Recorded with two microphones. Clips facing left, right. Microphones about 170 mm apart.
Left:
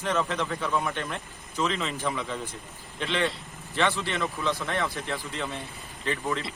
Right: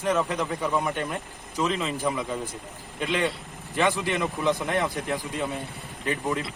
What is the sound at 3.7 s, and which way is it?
Speech, 15° right (ahead or behind).